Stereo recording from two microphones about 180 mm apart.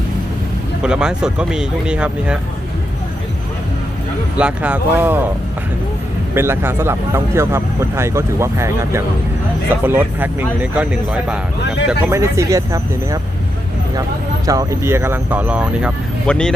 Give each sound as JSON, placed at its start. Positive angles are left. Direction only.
{"t": 0.8, "sound": "speech", "side_deg": -5}
{"t": 4.4, "sound": "speech", "side_deg": -5}
{"t": 6.3, "sound": "speech", "side_deg": -15}
{"t": 14.4, "sound": "speech", "side_deg": -20}
{"t": 16.2, "sound": "speech", "side_deg": 5}